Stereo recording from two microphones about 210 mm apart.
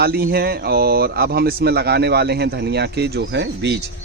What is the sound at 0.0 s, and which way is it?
Speech, 45° right (ahead or behind).